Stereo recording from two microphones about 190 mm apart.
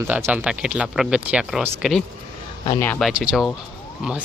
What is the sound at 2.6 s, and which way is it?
Speech, 20° left (ahead or behind).